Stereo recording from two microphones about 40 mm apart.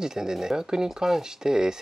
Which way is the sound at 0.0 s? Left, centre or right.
Centre.